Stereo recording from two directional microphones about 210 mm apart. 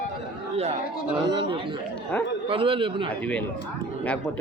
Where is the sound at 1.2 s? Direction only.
25° right (ahead or behind).